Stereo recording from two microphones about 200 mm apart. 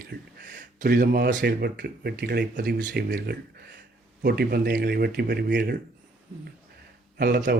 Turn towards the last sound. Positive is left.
turn(degrees=-50)  # may be behind; listen again after turning